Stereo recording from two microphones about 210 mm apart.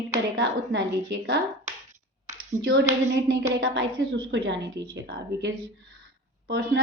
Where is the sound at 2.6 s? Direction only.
60° right (ahead or behind).